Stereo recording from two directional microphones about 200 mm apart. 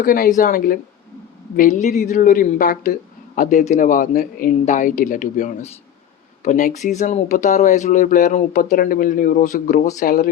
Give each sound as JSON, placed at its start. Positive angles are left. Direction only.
{"t": 0.0, "sound": "speech", "side_deg": 45}